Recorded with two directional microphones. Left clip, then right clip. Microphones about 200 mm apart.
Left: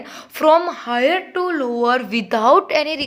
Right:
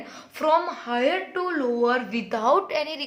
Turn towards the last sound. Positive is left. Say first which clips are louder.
# left 8 dB
turn(degrees=35)  # may be behind; listen again after turning